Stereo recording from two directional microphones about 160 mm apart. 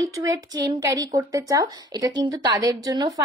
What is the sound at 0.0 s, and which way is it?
Speech, 20° right (ahead or behind).